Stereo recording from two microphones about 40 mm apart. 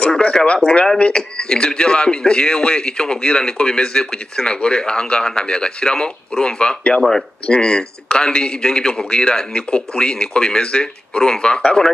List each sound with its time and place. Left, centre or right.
0.0 s speech: left
7.0 s speech: centre
7.4 s speech: left